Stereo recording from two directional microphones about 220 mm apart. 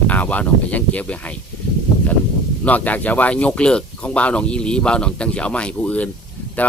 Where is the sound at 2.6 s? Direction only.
5° left (ahead or behind).